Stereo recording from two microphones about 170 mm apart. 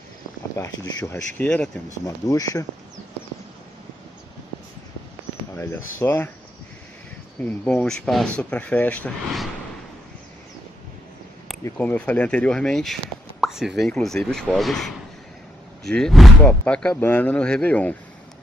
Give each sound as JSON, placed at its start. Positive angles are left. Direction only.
{"t": 0.6, "sound": "speech", "side_deg": 15}
{"t": 5.6, "sound": "speech", "side_deg": 15}
{"t": 7.3, "sound": "speech", "side_deg": 10}
{"t": 11.8, "sound": "speech", "side_deg": 10}